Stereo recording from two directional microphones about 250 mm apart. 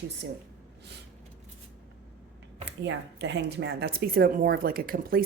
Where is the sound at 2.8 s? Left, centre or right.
Right.